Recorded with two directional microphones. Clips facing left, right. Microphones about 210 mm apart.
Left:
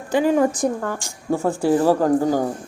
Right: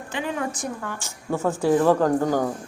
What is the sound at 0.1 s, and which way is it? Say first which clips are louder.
Speech: left 11 dB; 40° left (ahead or behind).